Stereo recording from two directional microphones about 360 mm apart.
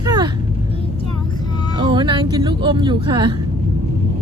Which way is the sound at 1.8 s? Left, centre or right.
Centre.